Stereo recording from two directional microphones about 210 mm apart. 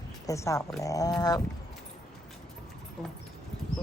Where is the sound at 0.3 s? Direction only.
15° left (ahead or behind).